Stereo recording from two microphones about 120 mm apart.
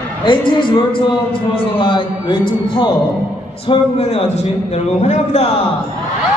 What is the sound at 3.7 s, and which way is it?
A man's voice, 60° left (ahead or behind).